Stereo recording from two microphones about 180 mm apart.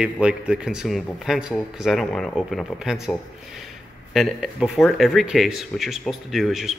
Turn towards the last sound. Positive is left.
turn(degrees=0)  # may be behind; listen again after turning